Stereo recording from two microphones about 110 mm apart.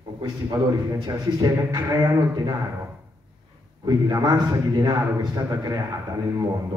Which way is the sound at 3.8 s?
35° right (ahead or behind).